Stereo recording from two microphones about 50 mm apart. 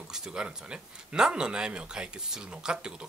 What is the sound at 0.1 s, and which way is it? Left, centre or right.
Speech, centre.